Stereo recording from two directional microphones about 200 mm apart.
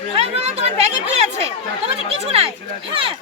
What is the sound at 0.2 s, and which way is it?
Chatter, 30° right (ahead or behind).